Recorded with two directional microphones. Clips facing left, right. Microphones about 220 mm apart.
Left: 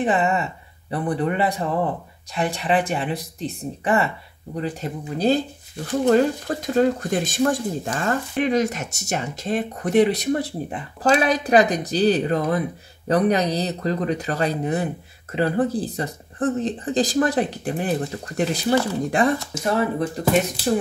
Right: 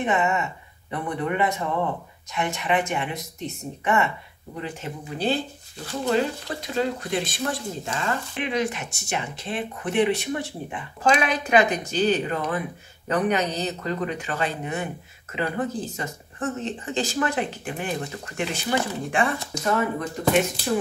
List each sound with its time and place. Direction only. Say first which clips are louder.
0.0 s speech: left 3 dB; 35° left (ahead or behind)